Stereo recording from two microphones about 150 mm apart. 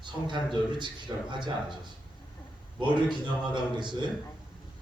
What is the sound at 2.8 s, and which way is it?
A man's voice, 30° right (ahead or behind).